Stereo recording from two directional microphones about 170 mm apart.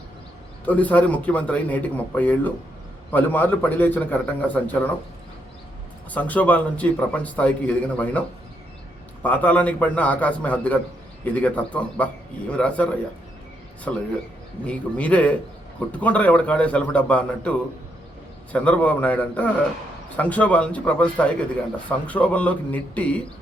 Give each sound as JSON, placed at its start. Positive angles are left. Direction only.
{"t": 0.6, "sound": "a man's voice", "side_deg": 10}
{"t": 6.1, "sound": "a man's voice", "side_deg": 10}
{"t": 9.2, "sound": "a man's voice", "side_deg": 10}